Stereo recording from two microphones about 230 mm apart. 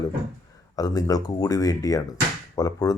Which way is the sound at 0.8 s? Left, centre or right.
Centre.